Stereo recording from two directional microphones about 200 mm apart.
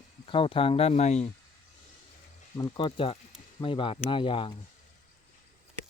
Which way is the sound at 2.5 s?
20° left (ahead or behind).